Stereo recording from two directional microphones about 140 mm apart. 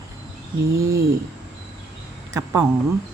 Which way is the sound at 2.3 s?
20° right (ahead or behind).